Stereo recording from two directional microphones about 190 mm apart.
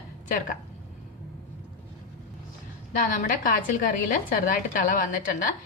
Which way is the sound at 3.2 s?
45° left (ahead or behind).